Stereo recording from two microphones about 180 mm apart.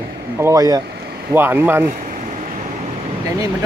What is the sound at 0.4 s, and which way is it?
Speech, 20° right (ahead or behind).